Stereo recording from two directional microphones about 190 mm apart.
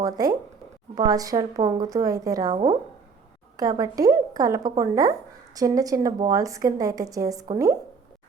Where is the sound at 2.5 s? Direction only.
30° right (ahead or behind).